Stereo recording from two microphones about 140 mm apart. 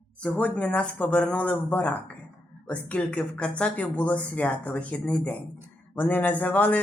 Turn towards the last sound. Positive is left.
turn(degrees=10)  # may be behind; listen again after turning